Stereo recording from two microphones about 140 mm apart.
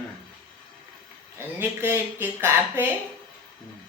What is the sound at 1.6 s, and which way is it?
Speech, 15° right (ahead or behind).